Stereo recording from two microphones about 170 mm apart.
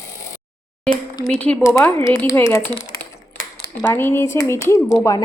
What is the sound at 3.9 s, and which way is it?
Speech, 15° left (ahead or behind).